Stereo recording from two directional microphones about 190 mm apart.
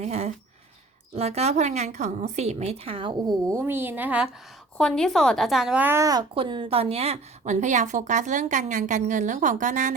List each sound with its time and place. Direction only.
0.0 s a woman's voice: 35° right (ahead or behind); by 4.3 s 10° right (ahead or behind)
4.8 s a woman's voice: 5° left (ahead or behind); by 9.9 s 40° right (ahead or behind)